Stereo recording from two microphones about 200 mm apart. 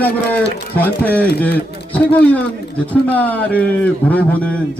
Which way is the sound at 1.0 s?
10° left (ahead or behind).